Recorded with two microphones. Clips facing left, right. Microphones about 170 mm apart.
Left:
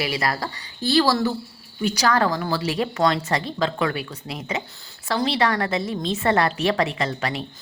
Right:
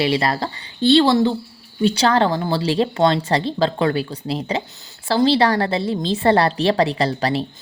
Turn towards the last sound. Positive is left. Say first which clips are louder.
# right 6 dB
turn(degrees=-35)  # may be behind; listen again after turning